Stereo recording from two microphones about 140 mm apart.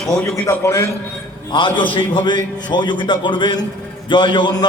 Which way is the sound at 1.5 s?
35° left (ahead or behind).